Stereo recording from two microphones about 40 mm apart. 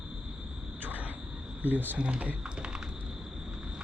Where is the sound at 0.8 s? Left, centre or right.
Right.